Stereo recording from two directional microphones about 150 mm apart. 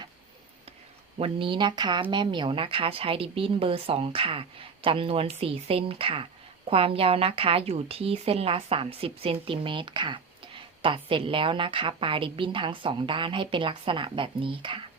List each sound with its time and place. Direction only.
1.2 s a woman's voice: 35° right (ahead or behind)